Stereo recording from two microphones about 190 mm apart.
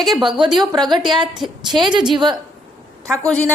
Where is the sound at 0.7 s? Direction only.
20° right (ahead or behind).